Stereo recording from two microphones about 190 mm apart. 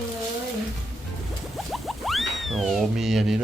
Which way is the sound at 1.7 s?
Centre (ahead or behind).